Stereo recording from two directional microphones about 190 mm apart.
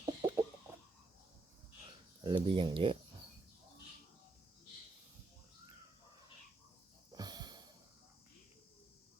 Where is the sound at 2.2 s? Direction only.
25° right (ahead or behind).